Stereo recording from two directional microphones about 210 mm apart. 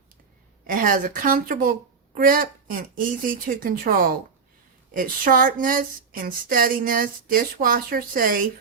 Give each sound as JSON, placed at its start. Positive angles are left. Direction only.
{"t": 0.7, "sound": "speech", "side_deg": -40}